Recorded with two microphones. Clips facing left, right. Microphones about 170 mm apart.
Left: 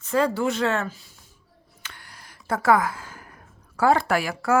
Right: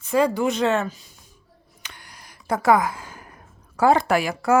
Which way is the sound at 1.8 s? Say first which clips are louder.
Right 1 dB; 15° right (ahead or behind).